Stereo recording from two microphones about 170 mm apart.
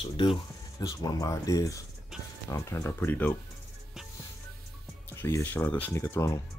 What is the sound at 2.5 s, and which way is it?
Speech, 20° left (ahead or behind).